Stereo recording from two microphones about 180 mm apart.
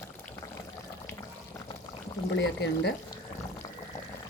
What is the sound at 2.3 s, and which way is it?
Speech, 75° left (ahead or behind).